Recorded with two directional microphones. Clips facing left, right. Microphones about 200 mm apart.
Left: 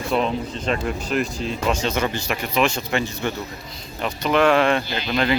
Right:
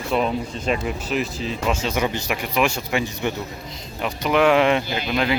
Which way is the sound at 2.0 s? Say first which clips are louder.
Even; 15° right (ahead or behind).